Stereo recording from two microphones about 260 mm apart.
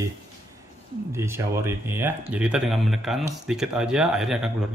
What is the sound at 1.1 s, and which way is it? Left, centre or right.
Speech, centre.